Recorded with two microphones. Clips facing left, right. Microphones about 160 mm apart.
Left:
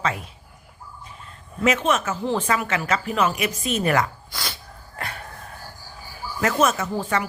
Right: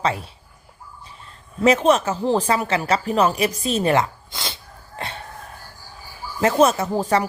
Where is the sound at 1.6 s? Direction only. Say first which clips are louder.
Right 5 dB; 35° right (ahead or behind).